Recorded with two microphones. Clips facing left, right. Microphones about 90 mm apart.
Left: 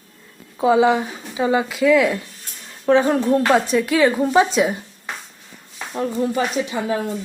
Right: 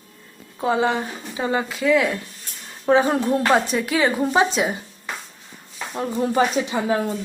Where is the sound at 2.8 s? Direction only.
10° right (ahead or behind).